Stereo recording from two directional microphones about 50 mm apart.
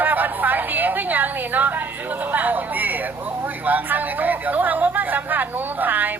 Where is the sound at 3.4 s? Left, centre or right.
Right.